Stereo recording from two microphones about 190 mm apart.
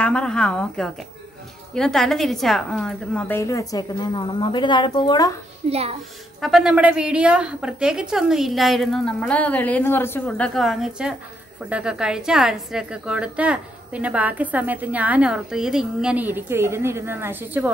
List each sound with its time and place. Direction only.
0.0 s a woman's voice: 5° left (ahead or behind); by 5.3 s 25° left (ahead or behind)
5.7 s a child's voice: 30° right (ahead or behind)
6.4 s a woman's voice: centre (ahead or behind)